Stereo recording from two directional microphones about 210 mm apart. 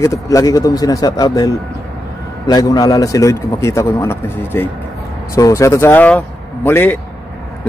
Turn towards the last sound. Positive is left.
turn(degrees=10)  # may be behind; listen again after turning